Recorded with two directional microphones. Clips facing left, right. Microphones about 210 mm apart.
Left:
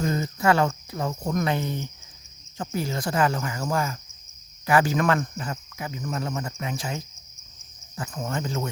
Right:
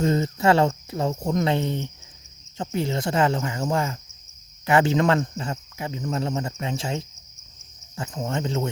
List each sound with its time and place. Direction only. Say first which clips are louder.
0.0 s speech: right 3 dB; 25° right (ahead or behind)